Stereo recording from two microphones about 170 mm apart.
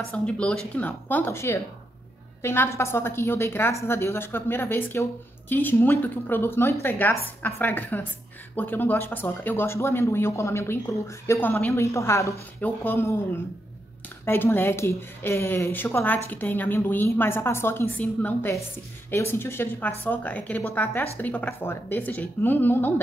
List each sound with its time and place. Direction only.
0.1 s a woman's voice: 5° left (ahead or behind)
14.2 s a woman's voice: 15° left (ahead or behind)